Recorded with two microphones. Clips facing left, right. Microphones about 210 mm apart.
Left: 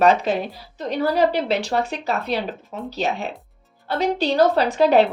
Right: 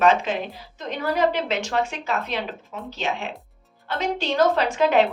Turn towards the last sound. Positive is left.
turn(degrees=35)  # may be behind; listen again after turning